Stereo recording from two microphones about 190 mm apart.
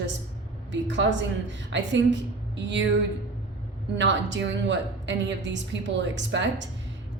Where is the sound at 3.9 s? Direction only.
70° right (ahead or behind).